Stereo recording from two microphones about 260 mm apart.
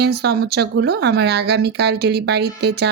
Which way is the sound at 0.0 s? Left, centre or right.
Right.